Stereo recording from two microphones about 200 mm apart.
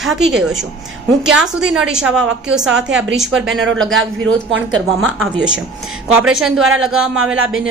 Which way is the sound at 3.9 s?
75° right (ahead or behind).